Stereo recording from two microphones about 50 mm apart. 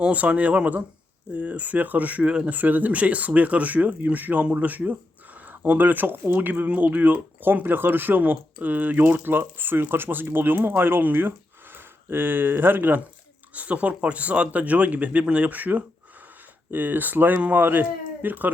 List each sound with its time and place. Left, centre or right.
0.0 s speech: right
13.5 s speech: right